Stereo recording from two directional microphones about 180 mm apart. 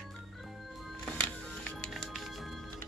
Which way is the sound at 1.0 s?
5° left (ahead or behind).